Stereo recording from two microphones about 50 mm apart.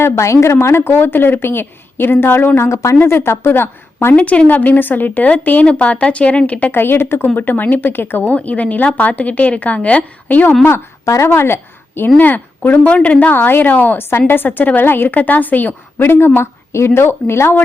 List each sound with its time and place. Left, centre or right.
0.0 s a woman's voice: left
0.5 s a woman's voice: left
2.6 s a woman's voice: left
2.9 s a woman's voice: left
4.1 s a woman's voice: left
4.4 s a woman's voice: left
6.7 s a woman's voice: left
10.7 s speech: left
12.1 s a woman's voice: left
14.1 s a woman's voice: left
16.4 s speech: left